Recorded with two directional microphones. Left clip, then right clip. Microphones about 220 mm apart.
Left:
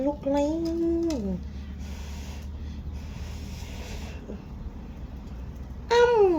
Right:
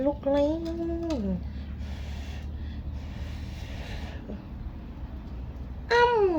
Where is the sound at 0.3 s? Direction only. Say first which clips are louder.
Even; 5° right (ahead or behind).